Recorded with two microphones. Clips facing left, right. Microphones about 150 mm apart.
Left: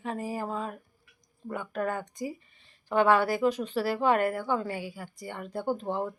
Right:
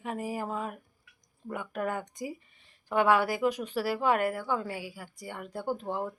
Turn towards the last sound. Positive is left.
turn(degrees=-5)  # may be behind; listen again after turning